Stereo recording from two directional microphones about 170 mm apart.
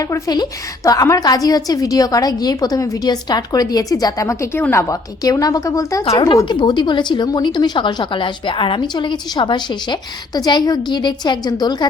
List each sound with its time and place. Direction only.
0.0 s a woman's voice: 20° left (ahead or behind)
6.1 s a woman's voice: 30° left (ahead or behind)